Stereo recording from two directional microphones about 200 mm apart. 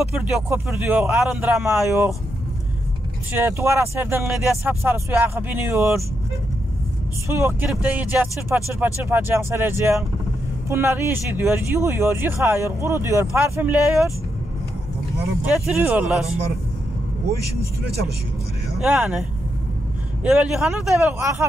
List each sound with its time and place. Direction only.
0.1 s a man's voice: 5° right (ahead or behind)
3.3 s speech: 15° right (ahead or behind)
7.2 s speech: 10° right (ahead or behind)
15.4 s a man's voice: 5° right (ahead or behind)
17.3 s speech: 50° right (ahead or behind)
18.8 s a man's voice: 5° right (ahead or behind)
20.2 s a man's voice: centre (ahead or behind)
21.2 s speech: 15° right (ahead or behind)